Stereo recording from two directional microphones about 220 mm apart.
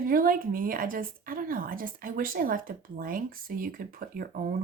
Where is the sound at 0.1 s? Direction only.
40° right (ahead or behind).